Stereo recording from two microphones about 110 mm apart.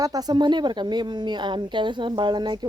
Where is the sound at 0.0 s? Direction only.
35° right (ahead or behind).